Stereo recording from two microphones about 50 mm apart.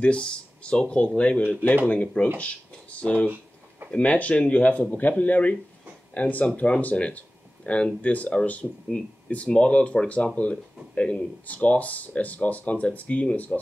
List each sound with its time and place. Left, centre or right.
0.0 s speech: left